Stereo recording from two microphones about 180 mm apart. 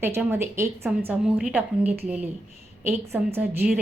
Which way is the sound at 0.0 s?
10° right (ahead or behind).